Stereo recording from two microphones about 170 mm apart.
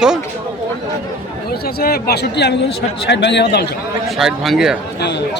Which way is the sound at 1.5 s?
65° left (ahead or behind).